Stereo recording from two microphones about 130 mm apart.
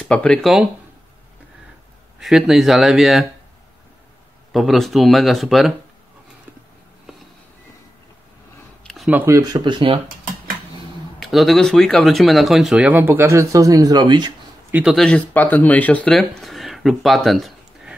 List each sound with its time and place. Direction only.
0.0 s speech: 10° left (ahead or behind)
2.1 s speech: 5° right (ahead or behind)
4.5 s speech: centre (ahead or behind)
8.8 s a sound: centre (ahead or behind)
9.1 s speech: 20° right (ahead or behind); by 9.9 s 40° right (ahead or behind)
10.0 s dishes: 90° right
11.1 s speech: centre (ahead or behind); by 14.3 s 35° right (ahead or behind)
14.7 s speech: 10° right (ahead or behind)
15.0 s speech: 10° left (ahead or behind)